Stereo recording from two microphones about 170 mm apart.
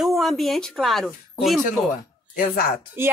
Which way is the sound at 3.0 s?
15° right (ahead or behind).